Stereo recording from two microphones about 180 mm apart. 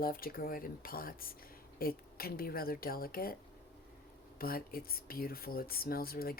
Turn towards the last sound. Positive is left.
turn(degrees=55)  # may be behind; listen again after turning